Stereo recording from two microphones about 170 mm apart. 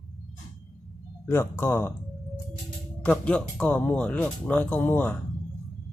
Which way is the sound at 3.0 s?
5° left (ahead or behind).